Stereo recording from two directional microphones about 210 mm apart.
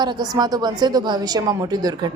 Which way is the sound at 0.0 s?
20° right (ahead or behind).